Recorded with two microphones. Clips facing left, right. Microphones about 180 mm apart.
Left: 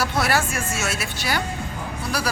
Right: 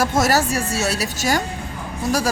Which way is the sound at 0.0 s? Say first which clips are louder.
Right 4 dB; 45° right (ahead or behind).